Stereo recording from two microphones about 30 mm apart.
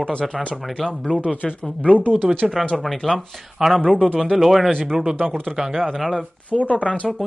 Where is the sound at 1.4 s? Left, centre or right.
Left.